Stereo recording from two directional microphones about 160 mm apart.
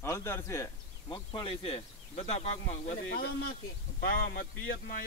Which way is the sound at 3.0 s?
85° left.